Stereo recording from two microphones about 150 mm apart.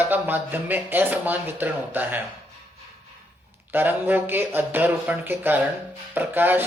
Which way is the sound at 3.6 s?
10° right (ahead or behind).